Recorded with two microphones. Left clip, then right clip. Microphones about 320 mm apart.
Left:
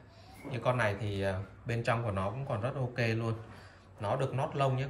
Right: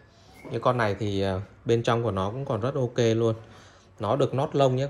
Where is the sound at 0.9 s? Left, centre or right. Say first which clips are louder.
Right 6 dB; right.